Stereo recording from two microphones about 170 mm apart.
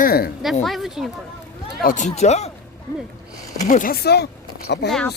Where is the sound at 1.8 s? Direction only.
50° left (ahead or behind).